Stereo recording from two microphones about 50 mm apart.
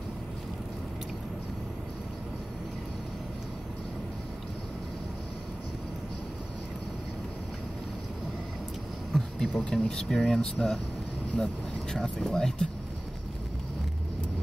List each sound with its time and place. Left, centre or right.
9.1 s a sound: centre
9.7 s speech: centre
11.9 s speech: centre